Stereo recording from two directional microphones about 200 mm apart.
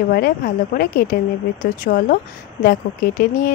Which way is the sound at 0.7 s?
50° left (ahead or behind).